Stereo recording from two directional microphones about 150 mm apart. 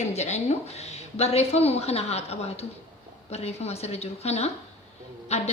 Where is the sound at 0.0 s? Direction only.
50° left (ahead or behind).